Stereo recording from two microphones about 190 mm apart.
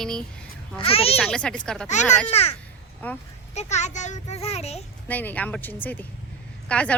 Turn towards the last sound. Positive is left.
turn(degrees=5)  # may be behind; listen again after turning